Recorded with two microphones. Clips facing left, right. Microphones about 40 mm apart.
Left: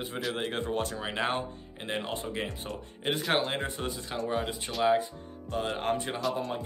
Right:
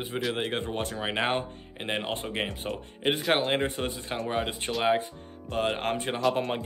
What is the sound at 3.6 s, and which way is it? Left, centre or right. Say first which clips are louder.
Speech: right 4 dB; right.